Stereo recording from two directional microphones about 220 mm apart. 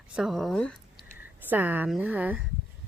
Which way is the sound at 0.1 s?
Centre (ahead or behind).